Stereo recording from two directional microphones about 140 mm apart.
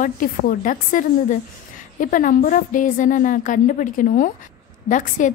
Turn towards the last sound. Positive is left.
turn(degrees=65)  # may be behind; listen again after turning